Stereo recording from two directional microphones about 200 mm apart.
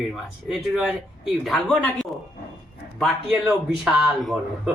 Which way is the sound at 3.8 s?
Centre (ahead or behind).